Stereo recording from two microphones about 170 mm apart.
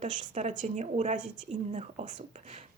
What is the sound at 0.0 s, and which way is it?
Speech, 45° right (ahead or behind).